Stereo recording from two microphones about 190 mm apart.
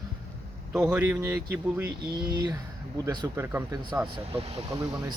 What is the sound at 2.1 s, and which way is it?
Speech, 25° right (ahead or behind).